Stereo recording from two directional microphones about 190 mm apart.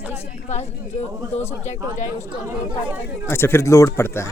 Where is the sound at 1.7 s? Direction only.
40° left (ahead or behind).